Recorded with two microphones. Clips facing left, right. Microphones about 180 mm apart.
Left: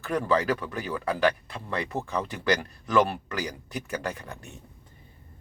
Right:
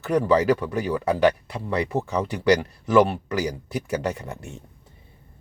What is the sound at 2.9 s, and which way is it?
Speech, 25° right (ahead or behind).